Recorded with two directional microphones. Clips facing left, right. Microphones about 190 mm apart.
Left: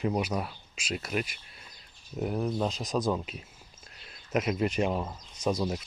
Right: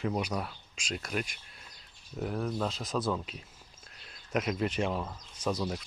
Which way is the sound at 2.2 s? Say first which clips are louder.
Left 3 dB; 20° left (ahead or behind).